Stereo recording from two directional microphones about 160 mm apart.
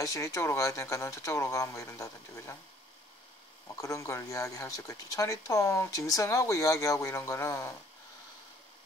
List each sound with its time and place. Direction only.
0.0 s speech: 20° left (ahead or behind)
3.6 s speech: 20° left (ahead or behind)